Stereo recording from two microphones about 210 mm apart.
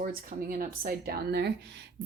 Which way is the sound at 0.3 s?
45° right (ahead or behind).